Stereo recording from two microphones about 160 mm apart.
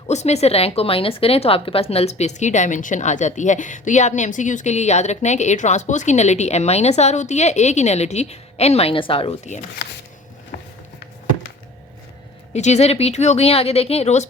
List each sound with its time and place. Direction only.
0.1 s speech: 45° left (ahead or behind)
12.5 s speech: 45° left (ahead or behind)